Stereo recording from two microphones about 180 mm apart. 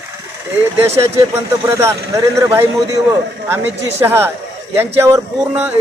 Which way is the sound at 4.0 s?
10° right (ahead or behind).